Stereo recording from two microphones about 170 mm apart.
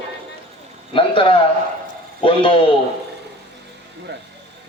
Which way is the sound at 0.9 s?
30° left (ahead or behind).